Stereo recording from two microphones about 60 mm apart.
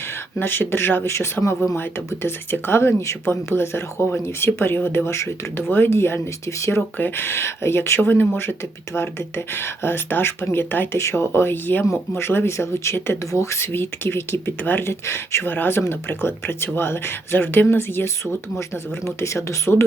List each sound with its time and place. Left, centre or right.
0.3 s speech: left
1.1 s speech: left
14.8 s speech: left
15.4 s speech: left
19.0 s speech: left